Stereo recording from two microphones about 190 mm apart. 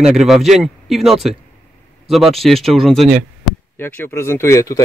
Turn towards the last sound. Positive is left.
turn(degrees=15)  # may be behind; listen again after turning